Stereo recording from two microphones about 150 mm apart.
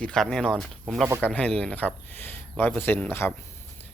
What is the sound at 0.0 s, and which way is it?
Speech, 5° left (ahead or behind).